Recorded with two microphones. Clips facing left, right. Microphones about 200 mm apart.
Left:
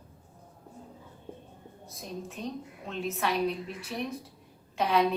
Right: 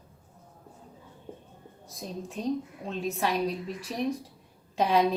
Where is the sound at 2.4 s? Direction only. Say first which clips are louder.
Right 7 dB; 40° right (ahead or behind).